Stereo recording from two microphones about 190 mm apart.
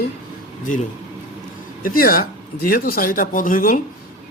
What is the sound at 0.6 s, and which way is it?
Speech, 45° left (ahead or behind).